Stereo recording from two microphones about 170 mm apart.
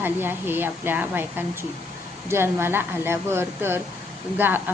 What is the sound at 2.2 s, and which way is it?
A woman's voice, 15° right (ahead or behind).